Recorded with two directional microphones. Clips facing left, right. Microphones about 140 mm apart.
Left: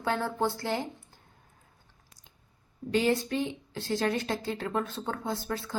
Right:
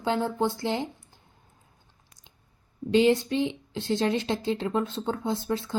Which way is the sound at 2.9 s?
20° right (ahead or behind).